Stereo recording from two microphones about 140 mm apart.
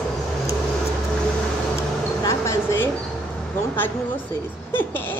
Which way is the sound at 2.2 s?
20° left (ahead or behind).